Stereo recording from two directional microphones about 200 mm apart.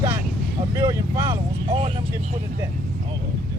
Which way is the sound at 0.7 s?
15° right (ahead or behind).